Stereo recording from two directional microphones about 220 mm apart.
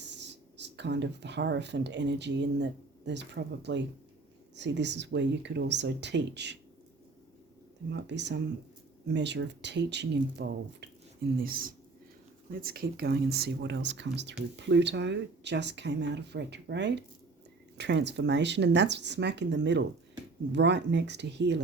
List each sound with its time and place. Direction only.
0.1 s speech: 50° right (ahead or behind)
7.9 s speech: 50° right (ahead or behind)
11.4 s speech: 40° right (ahead or behind)